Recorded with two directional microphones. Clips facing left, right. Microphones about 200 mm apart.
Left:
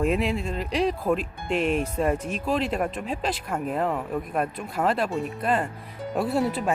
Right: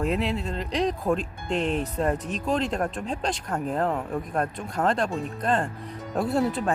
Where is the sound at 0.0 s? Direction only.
15° left (ahead or behind).